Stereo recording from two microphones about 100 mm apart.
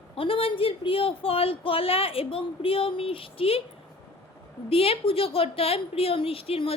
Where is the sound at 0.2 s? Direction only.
65° left (ahead or behind).